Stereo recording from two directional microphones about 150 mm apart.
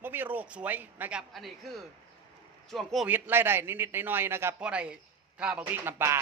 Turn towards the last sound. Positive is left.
turn(degrees=-15)  # may be behind; listen again after turning